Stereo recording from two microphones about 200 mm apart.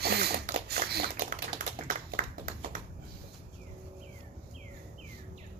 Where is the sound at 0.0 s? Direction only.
50° right (ahead or behind).